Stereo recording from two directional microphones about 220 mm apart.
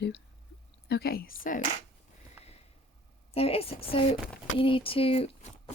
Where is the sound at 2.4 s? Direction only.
5° right (ahead or behind).